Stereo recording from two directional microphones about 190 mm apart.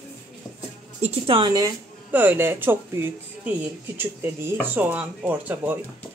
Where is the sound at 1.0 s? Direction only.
30° right (ahead or behind).